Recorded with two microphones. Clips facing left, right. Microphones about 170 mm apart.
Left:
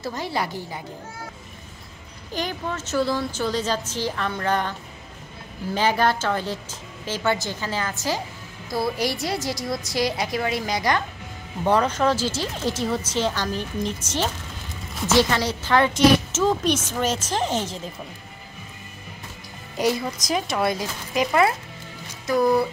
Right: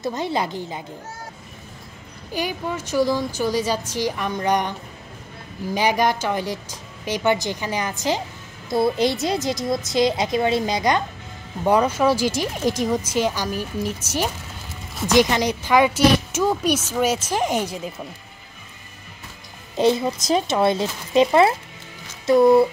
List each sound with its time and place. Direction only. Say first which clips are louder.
0.0 s speech: right 3 dB; 20° right (ahead or behind)
2.3 s a woman's voice: right 2 dB; 10° right (ahead or behind)
11.6 s a woman's voice: right 2 dB; 10° right (ahead or behind)
19.8 s speech: right 5 dB; 25° right (ahead or behind)